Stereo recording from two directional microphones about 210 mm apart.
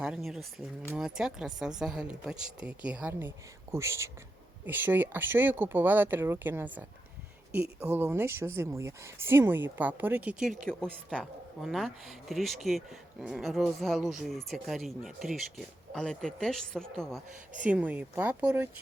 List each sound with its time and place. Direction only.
0.0 s speech: 5° right (ahead or behind)
17.2 s speech: 35° right (ahead or behind)
17.7 s speech: 5° right (ahead or behind)